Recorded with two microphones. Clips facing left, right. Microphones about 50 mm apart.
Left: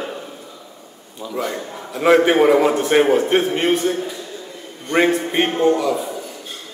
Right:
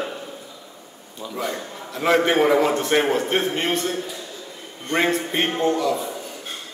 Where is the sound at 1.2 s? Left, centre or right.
Centre.